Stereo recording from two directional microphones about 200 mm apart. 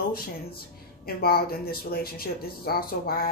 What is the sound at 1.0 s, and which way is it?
Speech, 50° left (ahead or behind).